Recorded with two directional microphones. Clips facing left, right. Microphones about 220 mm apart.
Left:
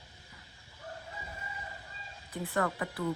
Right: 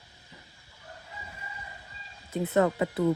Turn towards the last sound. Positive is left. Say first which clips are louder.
# right 8 dB
turn(degrees=-20)  # may be behind; listen again after turning